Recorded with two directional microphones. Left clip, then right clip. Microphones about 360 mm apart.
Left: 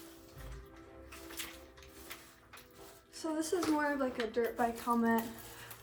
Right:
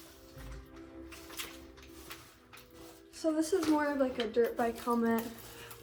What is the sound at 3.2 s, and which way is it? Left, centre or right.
A woman's voice, centre.